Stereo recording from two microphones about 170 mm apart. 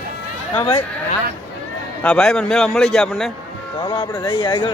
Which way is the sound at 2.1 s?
5° left (ahead or behind).